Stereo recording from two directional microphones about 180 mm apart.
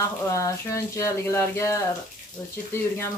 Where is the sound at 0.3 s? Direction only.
15° left (ahead or behind).